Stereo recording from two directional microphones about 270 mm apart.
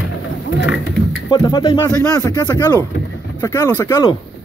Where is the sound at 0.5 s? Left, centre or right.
Left.